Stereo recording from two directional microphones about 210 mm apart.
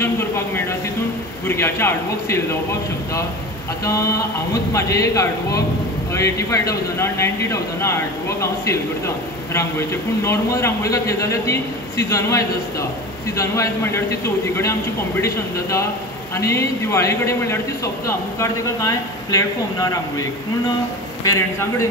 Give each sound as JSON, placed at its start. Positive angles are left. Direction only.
{"t": 0.0, "sound": "speech", "side_deg": 10}
{"t": 4.7, "sound": "speech", "side_deg": 15}